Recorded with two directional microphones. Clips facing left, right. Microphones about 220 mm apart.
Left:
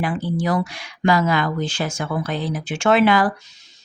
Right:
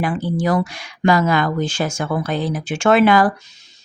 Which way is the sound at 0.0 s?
45° right (ahead or behind).